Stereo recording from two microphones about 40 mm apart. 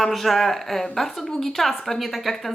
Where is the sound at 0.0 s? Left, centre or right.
Centre.